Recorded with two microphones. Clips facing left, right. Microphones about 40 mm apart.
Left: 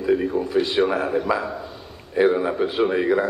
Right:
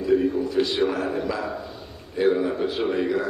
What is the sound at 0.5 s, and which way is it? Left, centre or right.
A man's voice, left.